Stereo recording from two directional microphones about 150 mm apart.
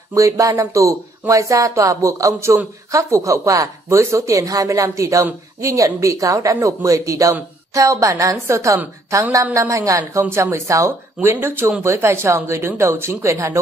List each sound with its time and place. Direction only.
0.1 s speech: 20° right (ahead or behind)